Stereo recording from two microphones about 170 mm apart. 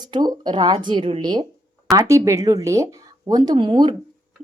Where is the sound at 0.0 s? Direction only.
25° right (ahead or behind).